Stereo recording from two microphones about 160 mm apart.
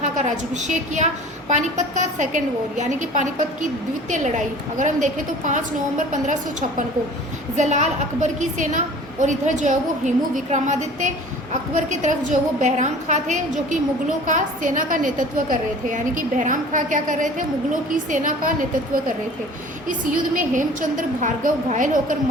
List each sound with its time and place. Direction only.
0.0 s a woman's voice: 50° right (ahead or behind)
19.9 s a woman's voice: 55° right (ahead or behind)